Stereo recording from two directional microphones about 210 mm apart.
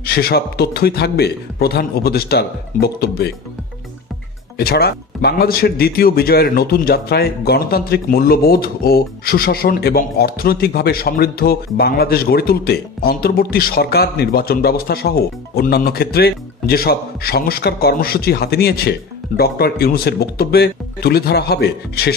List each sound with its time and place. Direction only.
0.0 s speech: 50° left (ahead or behind)
4.6 s speech: 50° left (ahead or behind)